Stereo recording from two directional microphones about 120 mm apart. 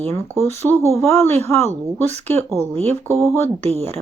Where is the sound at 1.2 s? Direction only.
20° left (ahead or behind).